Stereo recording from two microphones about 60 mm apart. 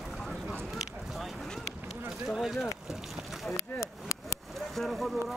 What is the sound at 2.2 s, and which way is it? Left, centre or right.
Speech, centre.